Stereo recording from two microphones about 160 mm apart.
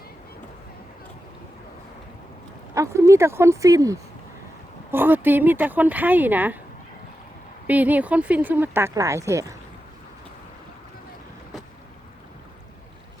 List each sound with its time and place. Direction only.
2.7 s speech: 20° right (ahead or behind)
7.7 s speech: 10° right (ahead or behind)